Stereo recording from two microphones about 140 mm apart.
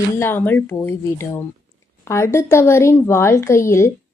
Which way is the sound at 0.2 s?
15° left (ahead or behind).